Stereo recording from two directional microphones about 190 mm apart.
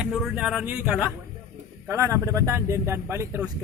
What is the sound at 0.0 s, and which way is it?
A man's voice, 5° right (ahead or behind).